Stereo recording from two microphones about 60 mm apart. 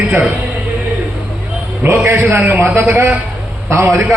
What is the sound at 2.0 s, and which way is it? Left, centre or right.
A man's voice, right.